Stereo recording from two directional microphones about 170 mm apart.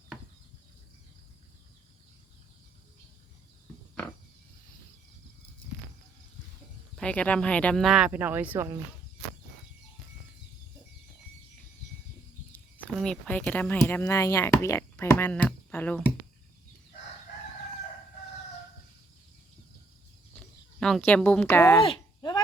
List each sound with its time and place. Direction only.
6.9 s speech: 5° left (ahead or behind); by 8.8 s 15° right (ahead or behind)
12.5 s speech: 10° left (ahead or behind)
20.3 s speech: 5° left (ahead or behind)
21.8 s a sound: 25° left (ahead or behind)